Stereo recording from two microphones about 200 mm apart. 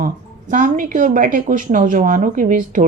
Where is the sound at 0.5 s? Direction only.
40° right (ahead or behind).